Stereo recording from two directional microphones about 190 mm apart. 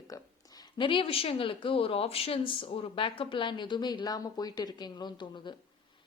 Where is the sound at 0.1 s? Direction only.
20° left (ahead or behind).